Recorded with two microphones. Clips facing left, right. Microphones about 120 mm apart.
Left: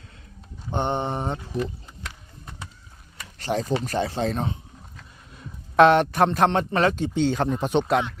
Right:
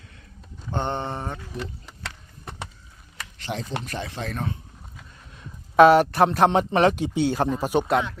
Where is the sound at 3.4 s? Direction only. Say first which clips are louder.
Left 6 dB; 40° left (ahead or behind); by 4.6 s 25° left (ahead or behind).